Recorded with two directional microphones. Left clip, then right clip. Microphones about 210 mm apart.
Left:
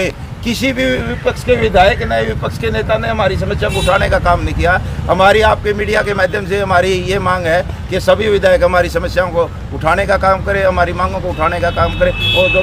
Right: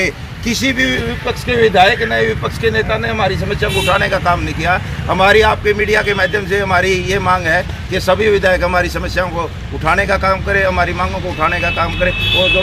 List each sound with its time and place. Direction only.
0.0 s speech: 25° left (ahead or behind)